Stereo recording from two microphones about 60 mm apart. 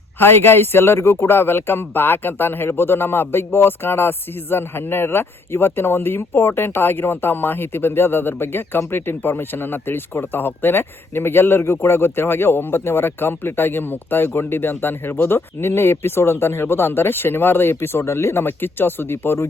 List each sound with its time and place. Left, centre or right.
0.2 s speech: left